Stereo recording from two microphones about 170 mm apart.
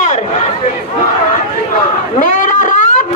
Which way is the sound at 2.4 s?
50° left (ahead or behind).